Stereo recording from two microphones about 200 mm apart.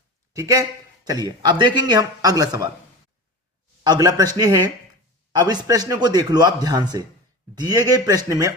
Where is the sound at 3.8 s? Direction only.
20° right (ahead or behind).